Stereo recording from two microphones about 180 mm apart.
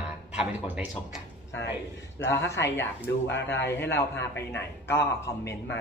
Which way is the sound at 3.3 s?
75° left (ahead or behind).